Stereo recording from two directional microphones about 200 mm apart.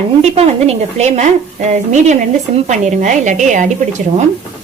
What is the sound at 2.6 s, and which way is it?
Speech, 35° right (ahead or behind).